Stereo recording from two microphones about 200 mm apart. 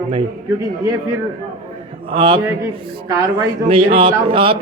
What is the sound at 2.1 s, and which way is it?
Speech, 25° right (ahead or behind).